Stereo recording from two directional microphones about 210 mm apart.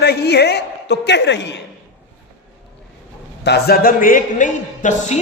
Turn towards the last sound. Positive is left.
turn(degrees=35)  # may be behind; listen again after turning